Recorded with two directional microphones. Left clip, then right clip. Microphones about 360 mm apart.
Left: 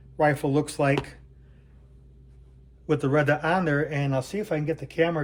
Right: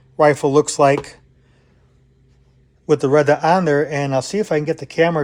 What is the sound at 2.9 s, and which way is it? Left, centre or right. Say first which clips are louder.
Speech: right 9 dB; centre.